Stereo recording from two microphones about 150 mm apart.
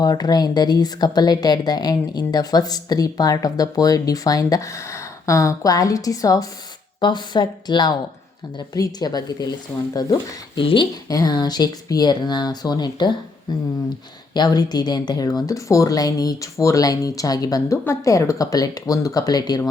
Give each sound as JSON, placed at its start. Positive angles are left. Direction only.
{"t": 0.0, "sound": "a woman's voice", "side_deg": 25}